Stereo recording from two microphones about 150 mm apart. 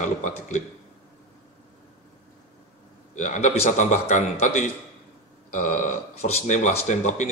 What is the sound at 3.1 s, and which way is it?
Speech, 55° left (ahead or behind).